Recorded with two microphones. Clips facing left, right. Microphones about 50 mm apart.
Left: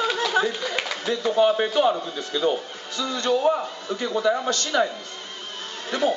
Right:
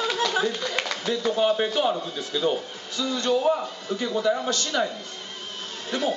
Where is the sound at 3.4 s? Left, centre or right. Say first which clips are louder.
Left 2 dB; centre.